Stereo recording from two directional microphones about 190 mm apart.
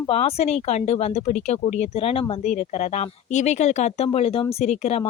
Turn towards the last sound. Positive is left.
turn(degrees=35)  # may be behind; listen again after turning